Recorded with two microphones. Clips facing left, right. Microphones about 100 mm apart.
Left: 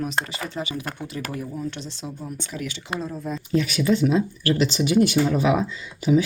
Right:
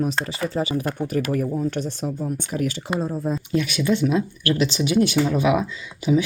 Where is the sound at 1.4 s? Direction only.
50° right (ahead or behind).